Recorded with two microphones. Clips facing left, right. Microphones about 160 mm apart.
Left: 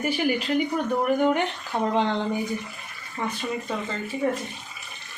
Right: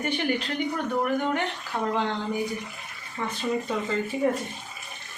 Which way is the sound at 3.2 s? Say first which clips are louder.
Left 2 dB; 20° left (ahead or behind).